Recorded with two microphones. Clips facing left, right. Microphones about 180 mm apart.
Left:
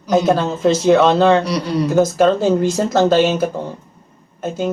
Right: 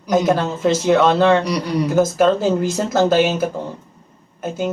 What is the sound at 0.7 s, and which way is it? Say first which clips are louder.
Speech: left 2 dB; 5° right (ahead or behind).